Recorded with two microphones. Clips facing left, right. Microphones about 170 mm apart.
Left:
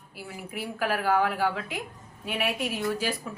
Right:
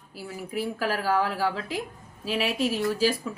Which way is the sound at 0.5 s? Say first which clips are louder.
Right 1 dB; 35° right (ahead or behind).